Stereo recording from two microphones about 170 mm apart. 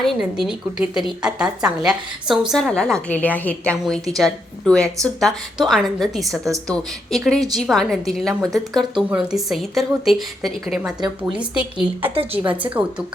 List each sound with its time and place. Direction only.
0.0 s a woman's voice: centre (ahead or behind)
12.1 s a woman's voice: 35° right (ahead or behind)
12.5 s a woman's voice: 10° right (ahead or behind)